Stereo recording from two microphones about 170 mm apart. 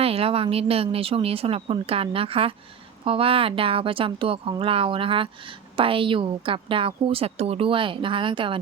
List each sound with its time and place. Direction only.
0.0 s a woman's voice: 35° right (ahead or behind)